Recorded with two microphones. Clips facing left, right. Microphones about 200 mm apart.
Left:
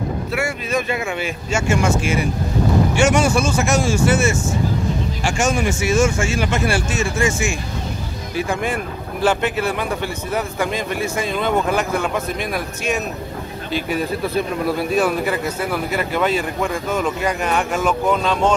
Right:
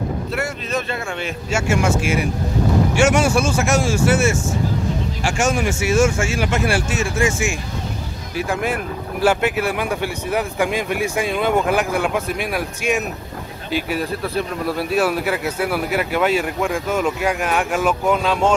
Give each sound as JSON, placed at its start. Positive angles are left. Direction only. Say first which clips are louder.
{"t": 0.3, "sound": "speech", "louder": "left 4 dB", "side_deg": 10}
{"t": 1.5, "sound": "speech", "louder": "even", "side_deg": -5}